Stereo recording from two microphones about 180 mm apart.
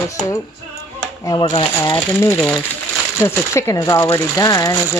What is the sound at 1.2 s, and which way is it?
Speech, 25° left (ahead or behind).